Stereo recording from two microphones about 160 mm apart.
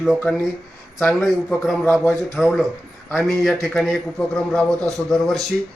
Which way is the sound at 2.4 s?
Centre (ahead or behind).